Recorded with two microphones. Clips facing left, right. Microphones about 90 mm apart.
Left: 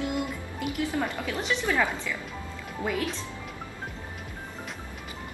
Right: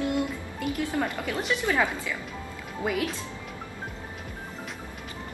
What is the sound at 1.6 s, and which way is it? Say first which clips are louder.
Speech: even; 15° right (ahead or behind).